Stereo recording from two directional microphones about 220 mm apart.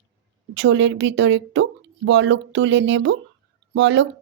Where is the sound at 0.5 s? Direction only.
55° right (ahead or behind).